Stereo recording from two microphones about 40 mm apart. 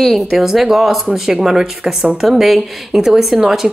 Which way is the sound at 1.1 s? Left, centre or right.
Centre.